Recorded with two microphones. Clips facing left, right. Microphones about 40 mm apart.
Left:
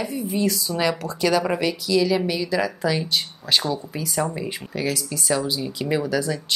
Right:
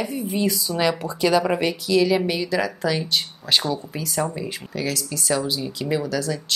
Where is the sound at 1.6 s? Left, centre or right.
Right; by 6.6 s centre.